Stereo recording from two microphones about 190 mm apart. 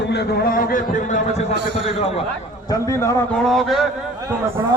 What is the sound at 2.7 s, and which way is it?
Speech, 15° left (ahead or behind).